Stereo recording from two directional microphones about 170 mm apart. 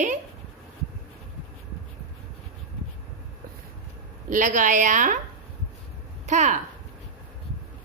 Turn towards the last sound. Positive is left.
turn(degrees=-45)  # may be behind; listen again after turning